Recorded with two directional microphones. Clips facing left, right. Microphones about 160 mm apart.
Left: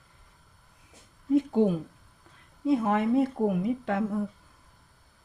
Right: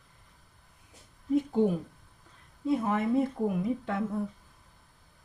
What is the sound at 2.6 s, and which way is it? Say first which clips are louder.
Speech: left 3 dB; 75° left (ahead or behind).